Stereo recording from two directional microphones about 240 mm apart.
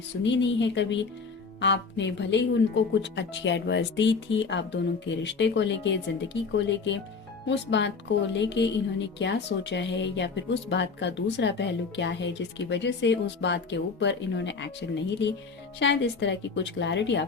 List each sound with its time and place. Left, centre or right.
0.2 s speech: left